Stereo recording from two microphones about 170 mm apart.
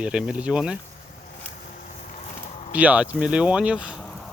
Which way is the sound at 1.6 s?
50° left (ahead or behind).